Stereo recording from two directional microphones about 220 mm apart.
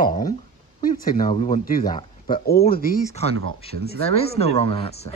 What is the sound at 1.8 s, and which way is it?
Speech, 20° left (ahead or behind).